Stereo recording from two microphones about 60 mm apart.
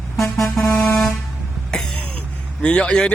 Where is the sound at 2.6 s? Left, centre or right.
Centre.